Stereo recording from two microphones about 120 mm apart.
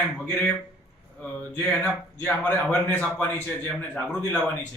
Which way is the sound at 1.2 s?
15° left (ahead or behind).